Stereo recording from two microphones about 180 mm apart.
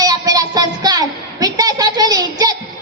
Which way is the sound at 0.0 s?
20° right (ahead or behind).